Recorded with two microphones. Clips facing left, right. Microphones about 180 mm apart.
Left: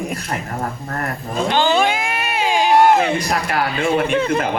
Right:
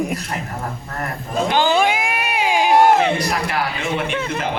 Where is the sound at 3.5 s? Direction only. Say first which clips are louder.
Left 4 dB; 45° left (ahead or behind).